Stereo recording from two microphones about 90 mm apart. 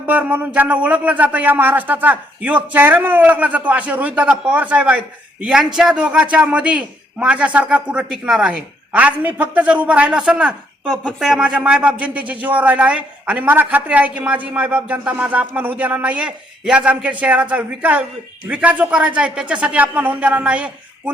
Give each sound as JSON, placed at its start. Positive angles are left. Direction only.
{"t": 0.0, "sound": "speech", "side_deg": -20}